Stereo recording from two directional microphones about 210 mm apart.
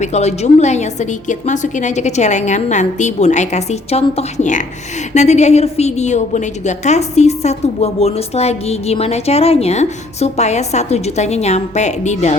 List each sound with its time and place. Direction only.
0.0 s a woman's voice: 30° left (ahead or behind)